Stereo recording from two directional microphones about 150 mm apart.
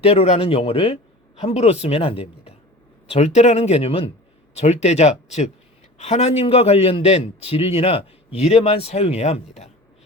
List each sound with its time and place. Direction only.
0.0 s a man's voice: 40° left (ahead or behind)